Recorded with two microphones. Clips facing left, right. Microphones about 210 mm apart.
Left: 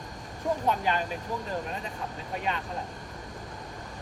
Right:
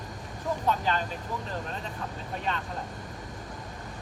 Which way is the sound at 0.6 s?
15° left (ahead or behind).